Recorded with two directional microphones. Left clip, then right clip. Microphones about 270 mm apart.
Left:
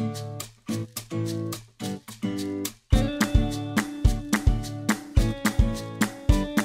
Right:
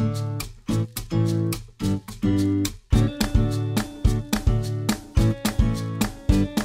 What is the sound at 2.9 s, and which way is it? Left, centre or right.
Music, centre.